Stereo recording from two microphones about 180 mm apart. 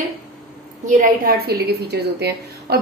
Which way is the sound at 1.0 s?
55° right (ahead or behind).